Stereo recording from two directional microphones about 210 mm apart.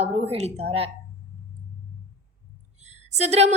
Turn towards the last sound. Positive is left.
turn(degrees=-30)  # may be behind; listen again after turning